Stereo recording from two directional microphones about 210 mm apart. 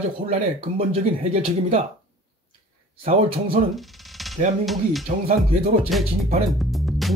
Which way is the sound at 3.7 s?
Centre (ahead or behind).